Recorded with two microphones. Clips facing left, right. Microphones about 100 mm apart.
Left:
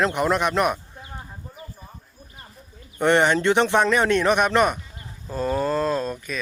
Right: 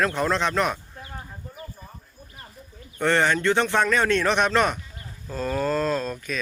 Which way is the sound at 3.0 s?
20° left (ahead or behind).